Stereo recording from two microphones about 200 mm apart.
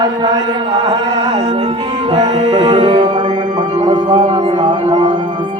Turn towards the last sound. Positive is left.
turn(degrees=-25)  # may be behind; listen again after turning